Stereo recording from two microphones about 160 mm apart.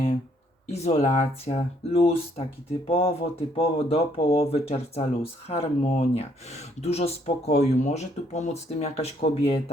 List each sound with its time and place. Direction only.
0.7 s speech: 40° left (ahead or behind)